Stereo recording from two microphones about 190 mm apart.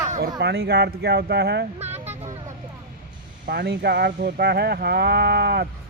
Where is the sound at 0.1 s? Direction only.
55° right (ahead or behind).